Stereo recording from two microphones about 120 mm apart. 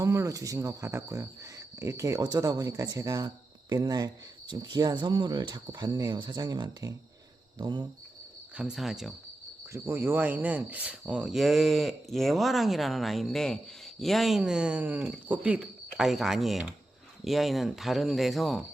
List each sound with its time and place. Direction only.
0.0 s speech: 25° right (ahead or behind)
8.5 s speech: 5° right (ahead or behind)
9.7 s speech: 20° right (ahead or behind); by 18.6 s centre (ahead or behind)